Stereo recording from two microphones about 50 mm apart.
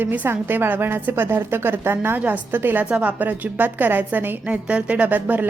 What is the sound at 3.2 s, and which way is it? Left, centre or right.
A woman's voice, right.